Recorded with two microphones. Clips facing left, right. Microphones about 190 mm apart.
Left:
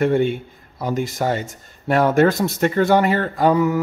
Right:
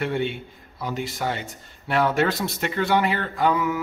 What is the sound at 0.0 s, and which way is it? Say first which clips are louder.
A man's voice: left 8 dB; 45° left (ahead or behind).